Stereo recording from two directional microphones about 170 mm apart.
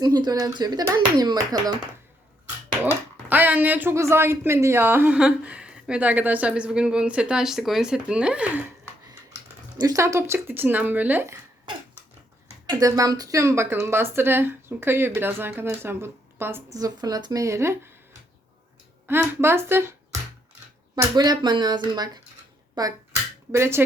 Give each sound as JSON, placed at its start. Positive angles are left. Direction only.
{"t": 0.0, "sound": "speech", "side_deg": -25}
{"t": 2.8, "sound": "speech", "side_deg": -10}
{"t": 9.7, "sound": "speech", "side_deg": -20}
{"t": 12.6, "sound": "speech", "side_deg": -20}
{"t": 19.0, "sound": "speech", "side_deg": -15}